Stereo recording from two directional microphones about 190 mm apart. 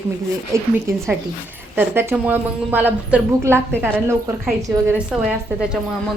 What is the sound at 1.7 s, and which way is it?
A woman's voice, 10° right (ahead or behind).